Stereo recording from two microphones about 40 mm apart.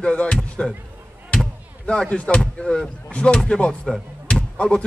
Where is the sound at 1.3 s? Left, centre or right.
Left.